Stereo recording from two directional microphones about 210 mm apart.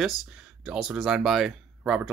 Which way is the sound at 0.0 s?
Centre (ahead or behind).